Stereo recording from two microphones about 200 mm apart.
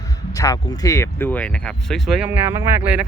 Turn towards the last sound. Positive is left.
turn(degrees=-5)  # may be behind; listen again after turning